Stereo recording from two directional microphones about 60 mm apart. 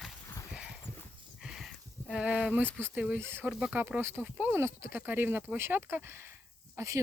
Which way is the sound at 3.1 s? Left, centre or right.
Right.